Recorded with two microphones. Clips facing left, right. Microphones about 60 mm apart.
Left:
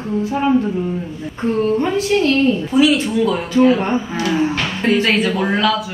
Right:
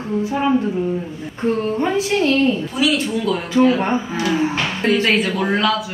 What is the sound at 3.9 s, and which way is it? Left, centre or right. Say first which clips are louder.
Speech: left 1 dB; right.